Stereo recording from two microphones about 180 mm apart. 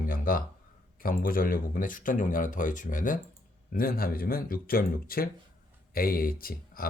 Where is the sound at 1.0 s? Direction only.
50° left (ahead or behind).